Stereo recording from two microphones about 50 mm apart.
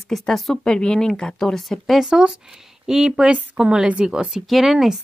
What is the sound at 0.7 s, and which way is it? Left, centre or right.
Speech, centre.